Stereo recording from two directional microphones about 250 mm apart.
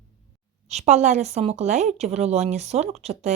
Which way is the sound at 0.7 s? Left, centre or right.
Right.